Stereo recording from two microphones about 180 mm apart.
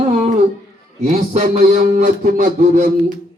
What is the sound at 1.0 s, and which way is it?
A man's voice, 40° right (ahead or behind).